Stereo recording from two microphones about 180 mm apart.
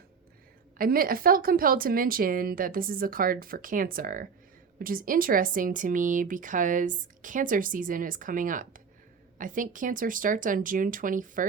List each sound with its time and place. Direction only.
0.8 s speech: 55° right (ahead or behind)